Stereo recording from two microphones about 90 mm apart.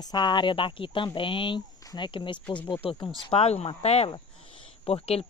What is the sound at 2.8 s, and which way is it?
Speech, 90° left.